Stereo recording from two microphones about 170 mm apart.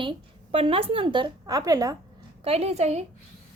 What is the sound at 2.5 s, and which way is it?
Speech, 40° right (ahead or behind).